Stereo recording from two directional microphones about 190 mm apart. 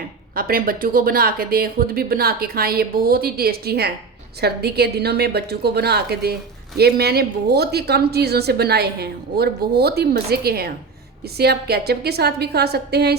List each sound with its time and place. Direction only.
0.3 s a woman's voice: 50° right (ahead or behind)